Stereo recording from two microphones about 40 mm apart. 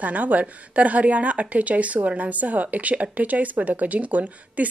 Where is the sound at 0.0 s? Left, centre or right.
Right.